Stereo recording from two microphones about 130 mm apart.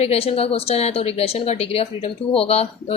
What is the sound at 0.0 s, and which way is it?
A woman's voice, 50° left (ahead or behind).